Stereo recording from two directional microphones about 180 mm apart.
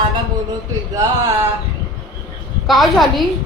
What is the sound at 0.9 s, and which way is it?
Speech, 20° right (ahead or behind).